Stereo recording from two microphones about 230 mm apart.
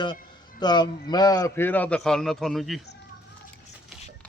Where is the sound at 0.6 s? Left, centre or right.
Centre.